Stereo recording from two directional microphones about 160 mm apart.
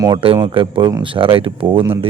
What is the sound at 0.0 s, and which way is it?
Speech, 30° right (ahead or behind).